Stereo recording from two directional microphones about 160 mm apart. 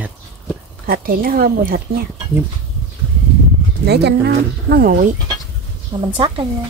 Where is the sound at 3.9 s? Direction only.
90° right; by 5.1 s 65° right (ahead or behind).